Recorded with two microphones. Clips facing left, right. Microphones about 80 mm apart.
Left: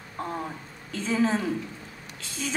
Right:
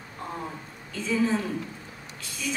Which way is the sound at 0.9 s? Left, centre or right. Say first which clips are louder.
Left 1 dB; left.